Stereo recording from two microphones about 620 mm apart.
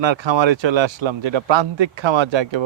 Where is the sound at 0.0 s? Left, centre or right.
Right.